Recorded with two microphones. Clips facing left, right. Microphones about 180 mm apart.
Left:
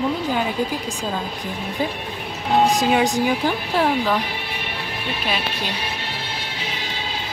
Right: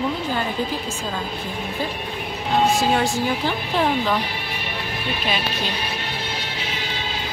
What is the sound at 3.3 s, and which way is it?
Speech, 5° left (ahead or behind).